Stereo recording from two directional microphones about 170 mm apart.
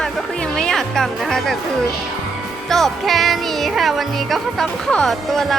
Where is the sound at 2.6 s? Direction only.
Centre (ahead or behind).